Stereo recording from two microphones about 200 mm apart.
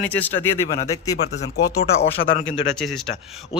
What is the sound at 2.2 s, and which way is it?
Speech, 45° left (ahead or behind).